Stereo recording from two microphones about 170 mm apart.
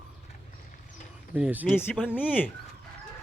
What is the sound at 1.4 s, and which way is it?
Speech, 10° right (ahead or behind).